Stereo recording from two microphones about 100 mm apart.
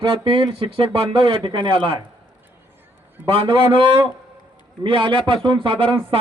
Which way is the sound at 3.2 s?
60° right (ahead or behind).